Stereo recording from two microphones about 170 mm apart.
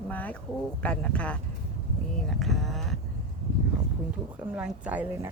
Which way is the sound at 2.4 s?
Centre (ahead or behind).